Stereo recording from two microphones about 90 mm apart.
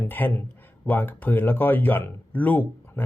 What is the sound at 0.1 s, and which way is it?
Speech, 20° left (ahead or behind).